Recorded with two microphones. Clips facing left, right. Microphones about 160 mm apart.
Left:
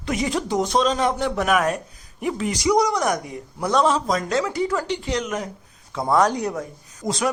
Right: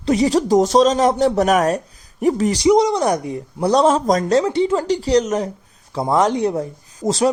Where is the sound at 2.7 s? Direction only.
25° right (ahead or behind).